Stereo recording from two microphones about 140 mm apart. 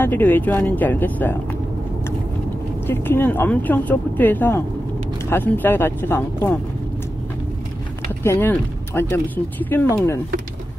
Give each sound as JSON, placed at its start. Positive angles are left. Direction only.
{"t": 0.0, "sound": "speech", "side_deg": 15}
{"t": 2.9, "sound": "speech", "side_deg": 15}
{"t": 8.2, "sound": "speech", "side_deg": 15}